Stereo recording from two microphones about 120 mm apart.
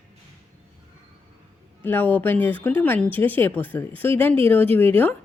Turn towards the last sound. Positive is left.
turn(degrees=15)  # may be behind; listen again after turning